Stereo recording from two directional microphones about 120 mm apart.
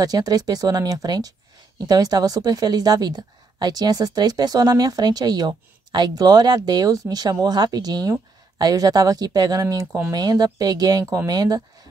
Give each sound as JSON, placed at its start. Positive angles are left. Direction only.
{"t": 0.0, "sound": "a woman's voice", "side_deg": -30}